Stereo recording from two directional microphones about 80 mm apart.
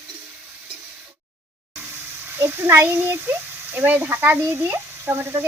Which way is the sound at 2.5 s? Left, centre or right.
Right.